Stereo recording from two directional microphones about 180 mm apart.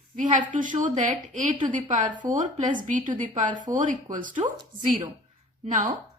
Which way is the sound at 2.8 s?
45° right (ahead or behind).